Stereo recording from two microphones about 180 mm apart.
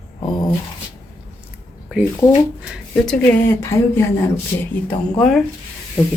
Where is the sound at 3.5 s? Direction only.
15° left (ahead or behind).